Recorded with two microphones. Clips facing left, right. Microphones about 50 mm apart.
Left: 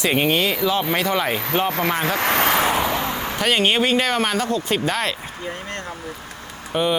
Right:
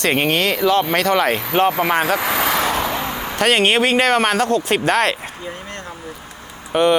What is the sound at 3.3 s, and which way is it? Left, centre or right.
Speech, right.